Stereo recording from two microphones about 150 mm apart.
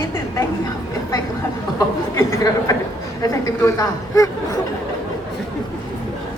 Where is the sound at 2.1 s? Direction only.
20° left (ahead or behind).